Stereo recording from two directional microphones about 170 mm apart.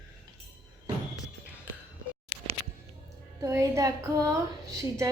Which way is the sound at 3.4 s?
15° right (ahead or behind).